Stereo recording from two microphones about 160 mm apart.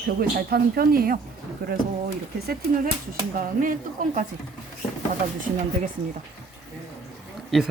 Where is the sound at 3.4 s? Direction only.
60° right (ahead or behind).